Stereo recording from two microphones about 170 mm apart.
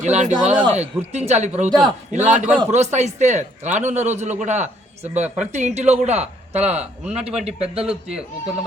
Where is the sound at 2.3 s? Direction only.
45° right (ahead or behind).